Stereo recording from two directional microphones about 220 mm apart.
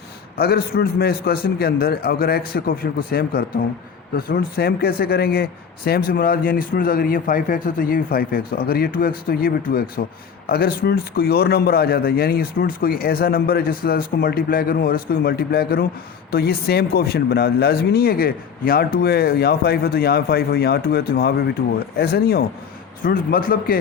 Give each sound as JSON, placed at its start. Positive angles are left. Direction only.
{"t": 0.3, "sound": "a man's voice", "side_deg": 45}